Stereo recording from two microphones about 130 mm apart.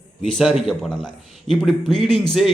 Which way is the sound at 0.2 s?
Centre (ahead or behind).